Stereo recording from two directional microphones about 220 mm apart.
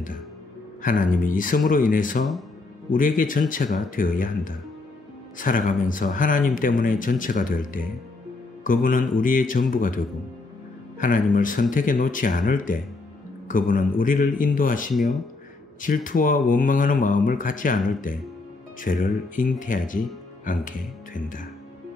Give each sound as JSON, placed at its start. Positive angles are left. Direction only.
{"t": 0.8, "sound": "speech", "side_deg": 35}
{"t": 15.0, "sound": "speech", "side_deg": 0}
{"t": 15.8, "sound": "speech", "side_deg": 35}